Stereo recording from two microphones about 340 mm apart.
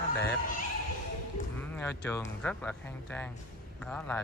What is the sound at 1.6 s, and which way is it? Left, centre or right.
Speech, centre.